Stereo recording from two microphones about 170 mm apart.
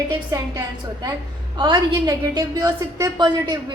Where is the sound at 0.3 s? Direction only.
20° right (ahead or behind).